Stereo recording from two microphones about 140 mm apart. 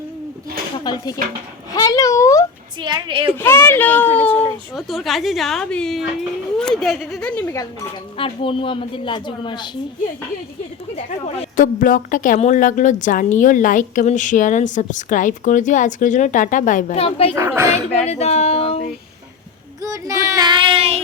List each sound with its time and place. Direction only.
0.9 s a child's voice: 30° left (ahead or behind)
2.8 s a woman's voice: 35° right (ahead or behind)
3.3 s speech: 15° left (ahead or behind)
4.7 s a woman's voice: centre (ahead or behind)
7.5 s a child's voice: 25° left (ahead or behind)
8.2 s speech: 40° left (ahead or behind)
11.5 s a woman's voice: 70° left (ahead or behind)
17.0 s a sound: 45° left (ahead or behind)
17.3 s speech: 20° right (ahead or behind)
17.9 s a sound: 50° left (ahead or behind)
19.8 s child singing: 20° right (ahead or behind); by 21.0 s 45° right (ahead or behind)